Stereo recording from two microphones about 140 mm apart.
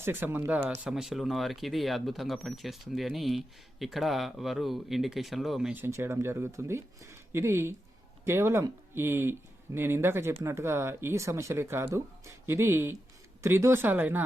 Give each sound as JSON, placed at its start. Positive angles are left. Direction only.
{"t": 0.0, "sound": "speech", "side_deg": -15}
{"t": 5.8, "sound": "speech", "side_deg": -20}